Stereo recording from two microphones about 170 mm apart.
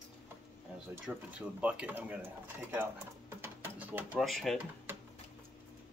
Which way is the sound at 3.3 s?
10° right (ahead or behind).